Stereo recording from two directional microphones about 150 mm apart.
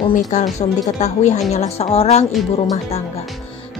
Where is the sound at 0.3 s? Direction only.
50° left (ahead or behind).